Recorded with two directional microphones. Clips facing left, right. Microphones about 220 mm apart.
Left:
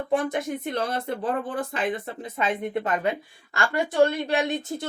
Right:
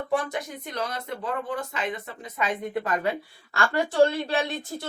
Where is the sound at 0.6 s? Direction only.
25° left (ahead or behind).